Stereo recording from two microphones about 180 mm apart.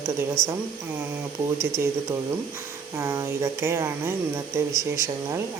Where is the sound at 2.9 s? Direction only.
15° right (ahead or behind).